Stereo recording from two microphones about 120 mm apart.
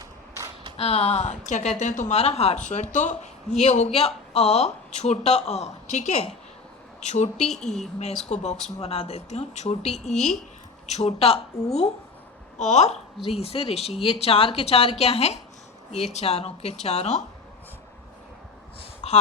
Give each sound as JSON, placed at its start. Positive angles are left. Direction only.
{"t": 0.8, "sound": "a woman's voice", "side_deg": 60}
{"t": 7.3, "sound": "speech", "side_deg": 5}
{"t": 7.7, "sound": "speech", "side_deg": 65}
{"t": 8.8, "sound": "speech", "side_deg": 55}
{"t": 12.5, "sound": "speech", "side_deg": 75}
{"t": 13.2, "sound": "speech", "side_deg": 55}
{"t": 18.8, "sound": "a sound", "side_deg": 60}